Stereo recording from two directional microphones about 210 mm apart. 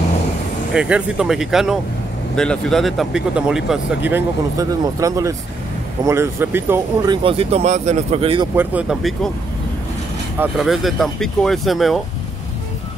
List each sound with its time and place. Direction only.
0.7 s speech: 5° right (ahead or behind)
7.2 s speech: 30° right (ahead or behind)
8.5 s speech: 5° right (ahead or behind)
10.4 s speech: centre (ahead or behind)